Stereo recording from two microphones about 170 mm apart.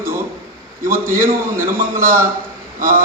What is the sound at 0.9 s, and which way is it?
Speech, 15° right (ahead or behind).